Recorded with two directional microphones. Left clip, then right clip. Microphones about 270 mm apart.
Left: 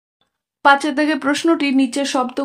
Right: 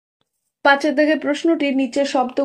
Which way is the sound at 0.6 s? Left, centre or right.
Centre.